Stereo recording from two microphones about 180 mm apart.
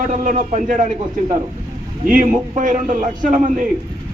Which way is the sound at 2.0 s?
50° right (ahead or behind).